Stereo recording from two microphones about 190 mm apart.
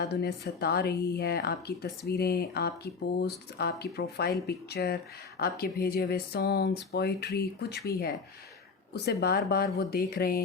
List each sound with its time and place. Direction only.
0.1 s speech: 55° left (ahead or behind)